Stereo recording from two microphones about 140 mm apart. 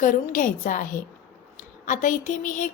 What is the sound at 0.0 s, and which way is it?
Speech, 70° left (ahead or behind).